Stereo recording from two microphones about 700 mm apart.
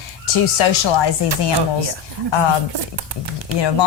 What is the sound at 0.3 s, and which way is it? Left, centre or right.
Speech, left.